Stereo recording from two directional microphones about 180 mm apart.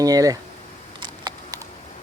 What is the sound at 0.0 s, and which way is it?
Speech, 20° right (ahead or behind).